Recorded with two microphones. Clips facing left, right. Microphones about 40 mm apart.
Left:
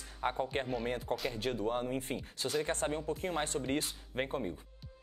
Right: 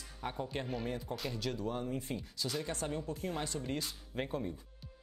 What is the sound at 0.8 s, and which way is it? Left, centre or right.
Speech, left.